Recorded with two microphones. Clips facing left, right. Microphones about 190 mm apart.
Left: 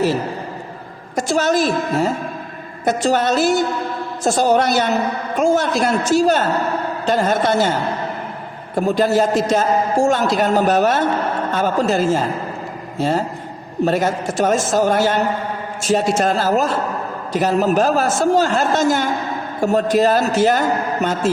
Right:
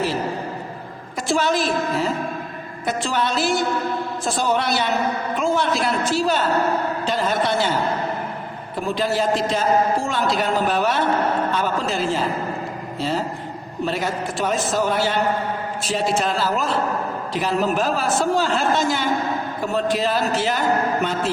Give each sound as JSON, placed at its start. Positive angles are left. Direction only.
{"t": 1.1, "sound": "a man's voice", "side_deg": 45}
{"t": 8.7, "sound": "a man's voice", "side_deg": 45}